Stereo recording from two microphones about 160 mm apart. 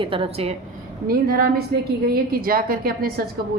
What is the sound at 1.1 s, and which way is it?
A woman's voice, 65° right (ahead or behind).